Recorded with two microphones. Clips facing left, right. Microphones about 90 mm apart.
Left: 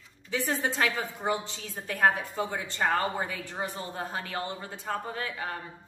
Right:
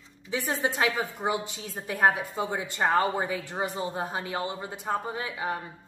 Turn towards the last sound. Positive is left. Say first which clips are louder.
# right 3 dB
turn(degrees=-15)  # may be behind; listen again after turning